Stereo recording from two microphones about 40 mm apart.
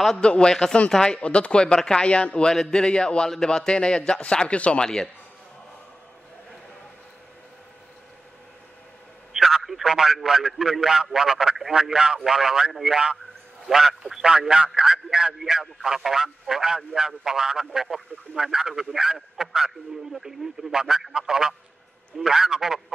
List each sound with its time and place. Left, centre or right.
0.2 s a man's voice: left
2.5 s a man's voice: centre
4.8 s a man's voice: centre
9.3 s a man's voice: centre
15.3 s a man's voice: centre